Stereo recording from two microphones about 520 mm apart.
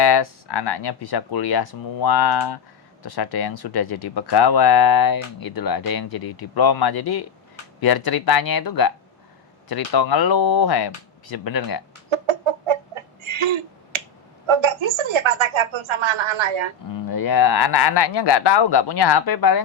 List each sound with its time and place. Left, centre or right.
0.0 s speech: left
12.1 s chicken: right
14.4 s a woman's voice: right
16.9 s speech: left